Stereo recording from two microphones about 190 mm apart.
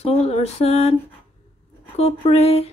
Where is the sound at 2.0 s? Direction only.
35° left (ahead or behind).